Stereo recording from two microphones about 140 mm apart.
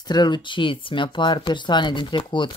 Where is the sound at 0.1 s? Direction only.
30° left (ahead or behind).